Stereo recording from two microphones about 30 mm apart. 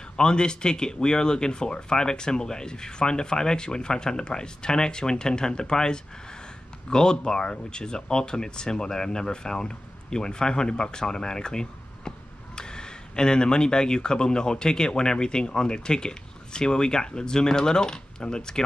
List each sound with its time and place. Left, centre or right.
0.2 s speech: left